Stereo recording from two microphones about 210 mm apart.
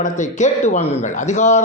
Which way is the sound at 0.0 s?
35° left (ahead or behind).